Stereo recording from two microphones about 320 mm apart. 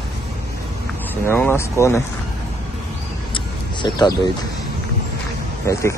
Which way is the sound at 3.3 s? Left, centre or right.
Centre.